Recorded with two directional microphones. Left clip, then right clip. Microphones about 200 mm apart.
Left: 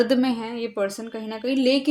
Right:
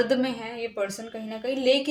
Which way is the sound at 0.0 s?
40° left (ahead or behind).